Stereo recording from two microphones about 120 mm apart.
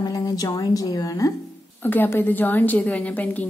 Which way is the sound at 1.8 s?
15° left (ahead or behind).